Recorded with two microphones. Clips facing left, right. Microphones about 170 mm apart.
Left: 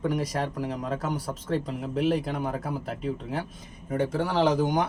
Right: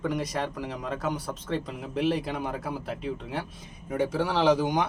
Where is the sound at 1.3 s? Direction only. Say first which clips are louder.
Left 3 dB; 5° left (ahead or behind).